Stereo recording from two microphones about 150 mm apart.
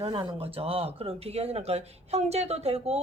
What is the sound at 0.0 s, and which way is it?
Speech, 35° right (ahead or behind).